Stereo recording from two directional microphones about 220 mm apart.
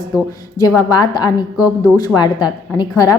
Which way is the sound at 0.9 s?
20° left (ahead or behind).